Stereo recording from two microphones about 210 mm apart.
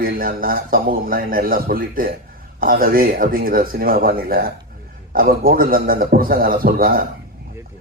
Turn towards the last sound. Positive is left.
turn(degrees=-45)  # may be behind; listen again after turning